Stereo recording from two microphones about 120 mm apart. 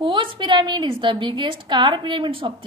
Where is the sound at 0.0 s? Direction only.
45° right (ahead or behind).